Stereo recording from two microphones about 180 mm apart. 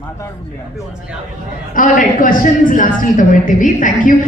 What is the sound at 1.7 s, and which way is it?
A woman's voice, 50° left (ahead or behind).